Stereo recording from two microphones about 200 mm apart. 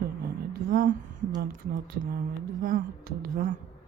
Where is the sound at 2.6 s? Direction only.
45° right (ahead or behind).